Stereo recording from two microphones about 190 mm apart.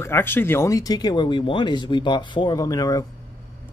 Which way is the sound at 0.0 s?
10° left (ahead or behind).